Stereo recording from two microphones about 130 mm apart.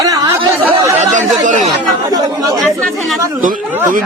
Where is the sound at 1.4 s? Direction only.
85° right.